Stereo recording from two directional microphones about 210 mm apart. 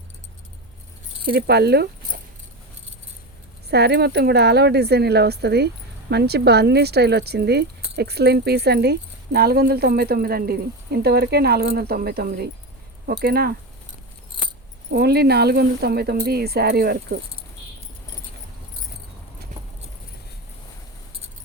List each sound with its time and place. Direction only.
1.3 s speech: 50° right (ahead or behind)
3.7 s speech: 50° right (ahead or behind)
14.3 s keys jangling: 25° right (ahead or behind)
14.8 s speech: 50° right (ahead or behind)